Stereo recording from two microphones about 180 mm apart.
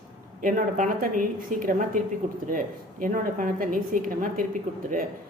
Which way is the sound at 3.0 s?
50° right (ahead or behind).